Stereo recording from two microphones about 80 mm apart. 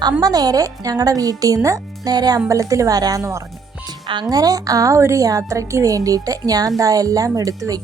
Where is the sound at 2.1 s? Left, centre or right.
Right.